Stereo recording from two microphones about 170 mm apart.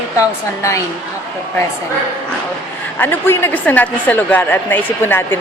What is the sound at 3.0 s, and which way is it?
A woman's voice, 15° left (ahead or behind).